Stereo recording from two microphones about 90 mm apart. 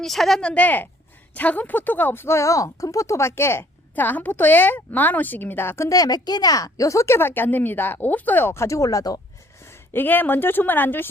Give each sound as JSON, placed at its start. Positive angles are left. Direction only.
{"t": 0.0, "sound": "speech", "side_deg": 5}
{"t": 9.9, "sound": "speech", "side_deg": 20}